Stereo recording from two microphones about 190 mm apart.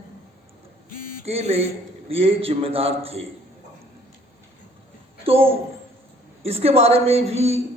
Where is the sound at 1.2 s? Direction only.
30° right (ahead or behind).